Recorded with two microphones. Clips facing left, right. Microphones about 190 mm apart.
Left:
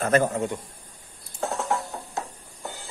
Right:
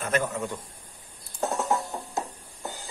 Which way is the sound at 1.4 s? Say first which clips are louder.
Right 1 dB; 20° right (ahead or behind).